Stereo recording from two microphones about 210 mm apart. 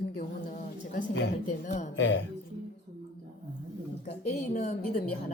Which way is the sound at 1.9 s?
65° left (ahead or behind).